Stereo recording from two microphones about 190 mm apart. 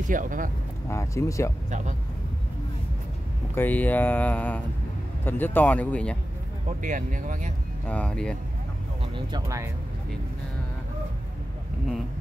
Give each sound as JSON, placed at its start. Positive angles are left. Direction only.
{"t": 0.1, "sound": "speech", "side_deg": -45}
{"t": 0.8, "sound": "speech", "side_deg": 15}
{"t": 3.5, "sound": "speech", "side_deg": 10}
{"t": 6.8, "sound": "speech", "side_deg": -40}
{"t": 7.8, "sound": "speech", "side_deg": 5}
{"t": 9.1, "sound": "speech", "side_deg": -20}